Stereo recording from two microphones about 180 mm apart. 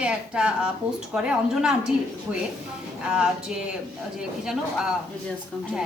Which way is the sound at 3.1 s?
5° right (ahead or behind).